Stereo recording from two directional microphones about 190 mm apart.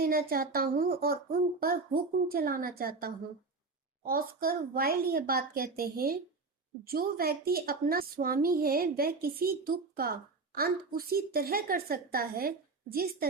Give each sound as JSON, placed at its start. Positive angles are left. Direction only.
{"t": 0.0, "sound": "a woman's voice", "side_deg": -50}